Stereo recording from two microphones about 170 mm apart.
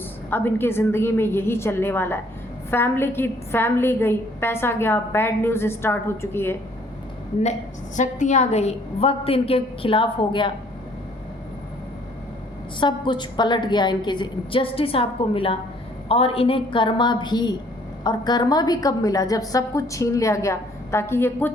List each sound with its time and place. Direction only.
0.3 s a woman's voice: 10° left (ahead or behind)
7.9 s a woman's voice: 45° left (ahead or behind); by 10.5 s 30° left (ahead or behind)
12.8 s a woman's voice: 25° left (ahead or behind)